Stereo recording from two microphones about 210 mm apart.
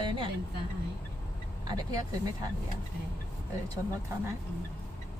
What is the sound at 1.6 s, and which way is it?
Speech, 15° right (ahead or behind).